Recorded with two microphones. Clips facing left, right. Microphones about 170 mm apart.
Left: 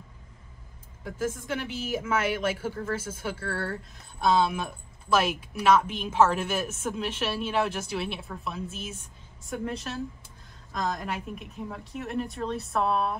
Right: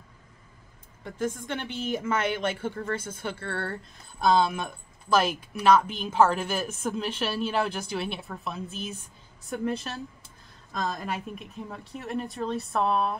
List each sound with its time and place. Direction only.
1.0 s speech: 5° left (ahead or behind)
11.0 s speech: centre (ahead or behind)